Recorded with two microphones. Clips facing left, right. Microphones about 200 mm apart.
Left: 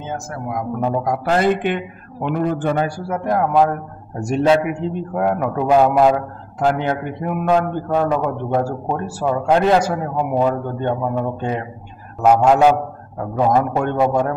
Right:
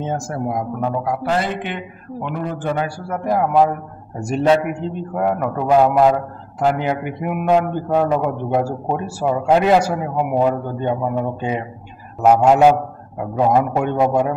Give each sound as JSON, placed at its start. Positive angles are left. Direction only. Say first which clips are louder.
{"t": 0.0, "sound": "a man's voice", "louder": "right 4 dB", "side_deg": -30}
{"t": 1.0, "sound": "speech", "louder": "left 6 dB", "side_deg": 50}
{"t": 3.1, "sound": "a man's voice", "louder": "right 2 dB", "side_deg": 0}